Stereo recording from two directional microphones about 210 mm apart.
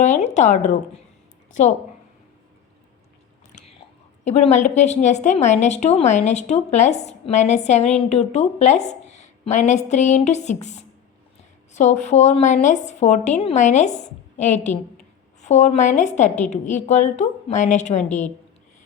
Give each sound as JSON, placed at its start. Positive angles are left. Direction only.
{"t": 0.0, "sound": "a woman's voice", "side_deg": 35}
{"t": 4.2, "sound": "a woman's voice", "side_deg": 30}